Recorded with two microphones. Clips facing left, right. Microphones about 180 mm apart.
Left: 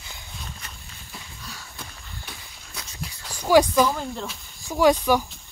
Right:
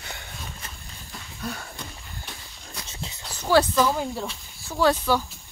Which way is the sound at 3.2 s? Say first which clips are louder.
Left 3 dB; 10° left (ahead or behind).